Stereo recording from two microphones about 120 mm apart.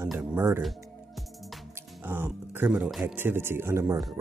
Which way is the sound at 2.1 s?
20° right (ahead or behind).